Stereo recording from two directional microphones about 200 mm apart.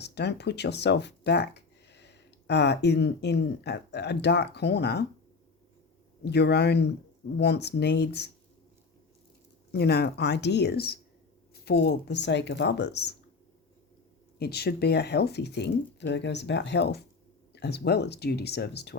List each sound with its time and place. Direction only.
0.0 s speech: 55° left (ahead or behind)
6.2 s speech: 55° left (ahead or behind)
9.7 s speech: 55° left (ahead or behind)
14.3 s speech: 55° left (ahead or behind)